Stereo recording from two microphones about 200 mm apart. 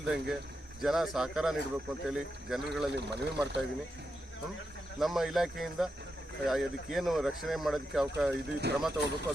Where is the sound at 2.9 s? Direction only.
60° right (ahead or behind).